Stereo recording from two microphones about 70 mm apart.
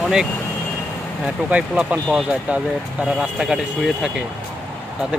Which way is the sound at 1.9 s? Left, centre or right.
Centre.